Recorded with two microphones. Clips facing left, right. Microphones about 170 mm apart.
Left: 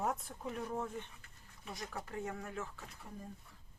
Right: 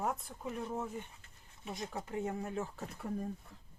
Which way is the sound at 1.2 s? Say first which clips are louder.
Right 4 dB; 25° right (ahead or behind).